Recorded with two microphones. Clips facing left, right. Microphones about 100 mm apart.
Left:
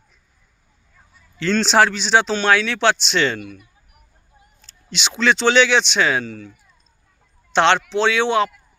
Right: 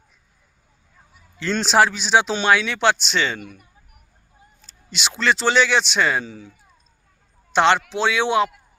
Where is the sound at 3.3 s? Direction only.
40° right (ahead or behind).